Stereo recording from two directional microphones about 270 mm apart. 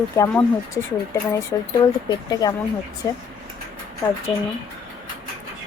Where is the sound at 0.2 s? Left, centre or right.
Centre.